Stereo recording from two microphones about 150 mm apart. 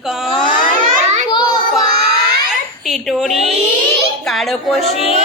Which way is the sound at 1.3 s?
30° left (ahead or behind).